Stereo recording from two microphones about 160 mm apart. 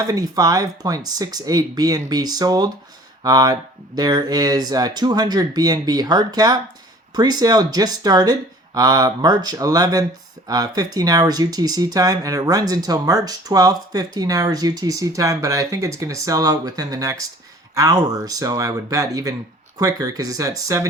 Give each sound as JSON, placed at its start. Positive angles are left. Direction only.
{"t": 0.1, "sound": "speech", "side_deg": -25}